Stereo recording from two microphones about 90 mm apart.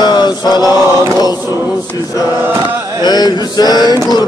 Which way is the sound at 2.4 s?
25° right (ahead or behind).